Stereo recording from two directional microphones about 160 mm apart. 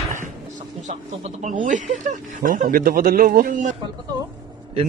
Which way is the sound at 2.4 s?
55° right (ahead or behind).